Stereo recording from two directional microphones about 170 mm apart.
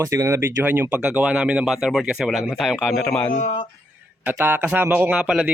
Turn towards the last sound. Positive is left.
turn(degrees=-5)  # may be behind; listen again after turning